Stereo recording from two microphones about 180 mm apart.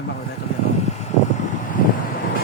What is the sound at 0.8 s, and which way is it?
Vehicle, 40° left (ahead or behind).